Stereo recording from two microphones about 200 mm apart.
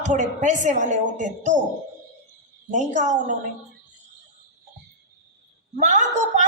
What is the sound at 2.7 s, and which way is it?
Speech, 35° right (ahead or behind).